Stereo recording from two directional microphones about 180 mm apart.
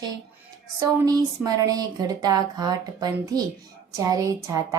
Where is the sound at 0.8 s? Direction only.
20° right (ahead or behind).